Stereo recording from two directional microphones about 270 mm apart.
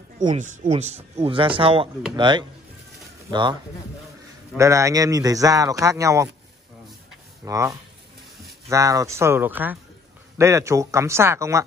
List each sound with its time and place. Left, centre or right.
0.4 s speech: right
4.6 s speech: centre
7.4 s speech: centre